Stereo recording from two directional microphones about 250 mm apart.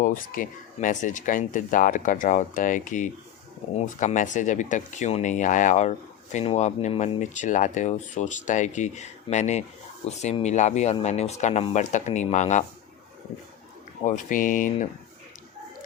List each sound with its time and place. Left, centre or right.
0.0 s speech: left
14.0 s speech: left